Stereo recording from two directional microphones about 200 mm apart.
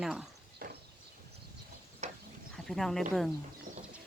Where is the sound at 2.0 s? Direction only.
35° right (ahead or behind).